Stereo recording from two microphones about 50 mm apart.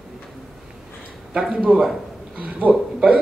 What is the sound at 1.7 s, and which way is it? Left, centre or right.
Speech, centre.